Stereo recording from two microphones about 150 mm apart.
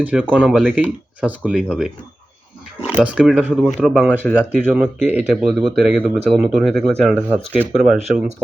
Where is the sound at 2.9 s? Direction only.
10° right (ahead or behind).